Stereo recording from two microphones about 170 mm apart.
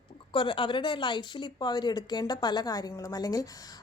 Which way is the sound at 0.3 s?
30° left (ahead or behind).